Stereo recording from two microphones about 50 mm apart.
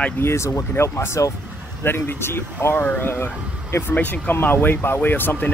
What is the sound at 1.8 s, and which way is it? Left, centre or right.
Speech, left.